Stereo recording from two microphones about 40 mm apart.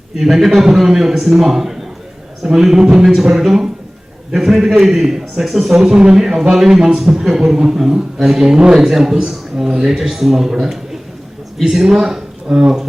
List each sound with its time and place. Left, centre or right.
0.2 s a man's voice: centre
5.8 s a man's voice: centre
11.7 s speech: centre